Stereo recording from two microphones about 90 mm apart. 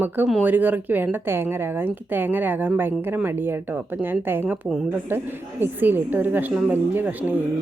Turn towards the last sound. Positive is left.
turn(degrees=-20)  # may be behind; listen again after turning